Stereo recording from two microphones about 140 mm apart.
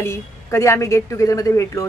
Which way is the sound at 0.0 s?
20° left (ahead or behind).